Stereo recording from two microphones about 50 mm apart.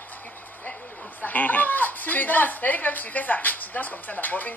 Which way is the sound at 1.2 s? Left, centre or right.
Left.